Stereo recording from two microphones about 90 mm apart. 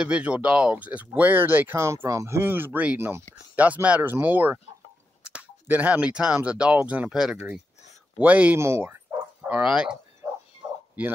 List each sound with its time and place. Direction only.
0.0 s speech: 15° right (ahead or behind)
3.5 s speech: 15° right (ahead or behind)
8.5 s speech: 30° right (ahead or behind)
9.4 s speech: 10° right (ahead or behind)
11.0 s speech: 15° right (ahead or behind)